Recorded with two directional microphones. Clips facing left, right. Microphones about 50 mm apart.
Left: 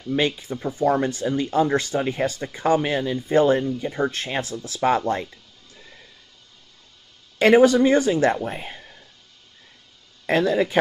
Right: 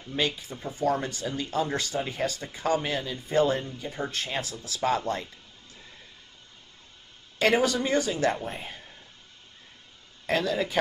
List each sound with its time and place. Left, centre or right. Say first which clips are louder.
0.1 s speech: left 6 dB; left
7.3 s speech: left 9 dB; left
10.2 s speech: left 7 dB; left